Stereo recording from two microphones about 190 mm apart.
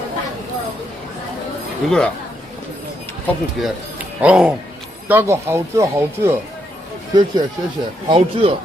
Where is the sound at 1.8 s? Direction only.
Centre (ahead or behind).